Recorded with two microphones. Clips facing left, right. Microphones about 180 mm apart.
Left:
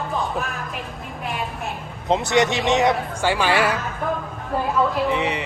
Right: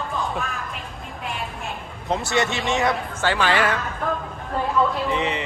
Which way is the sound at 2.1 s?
20° left (ahead or behind).